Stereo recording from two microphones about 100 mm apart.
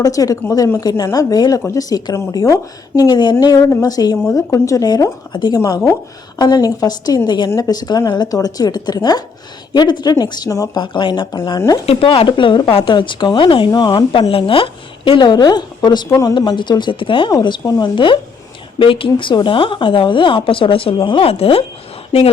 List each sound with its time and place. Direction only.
0.0 s a woman's voice: 35° left (ahead or behind)
5.3 s a woman's voice: 50° left (ahead or behind)
5.5 s a woman's voice: 35° left (ahead or behind)
10.8 s a woman's voice: 50° left (ahead or behind)
11.9 s speech: 65° left (ahead or behind)
13.7 s a woman's voice: 45° left (ahead or behind)
17.4 s a woman's voice: 45° left (ahead or behind)
17.9 s speech: 55° left (ahead or behind); by 21.6 s 75° left (ahead or behind)